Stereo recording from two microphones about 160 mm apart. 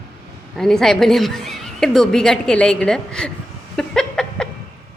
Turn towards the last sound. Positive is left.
turn(degrees=5)  # may be behind; listen again after turning